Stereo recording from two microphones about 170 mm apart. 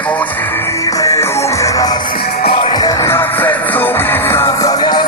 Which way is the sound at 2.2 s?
65° left (ahead or behind).